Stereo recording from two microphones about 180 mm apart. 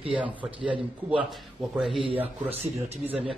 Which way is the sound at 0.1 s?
5° right (ahead or behind).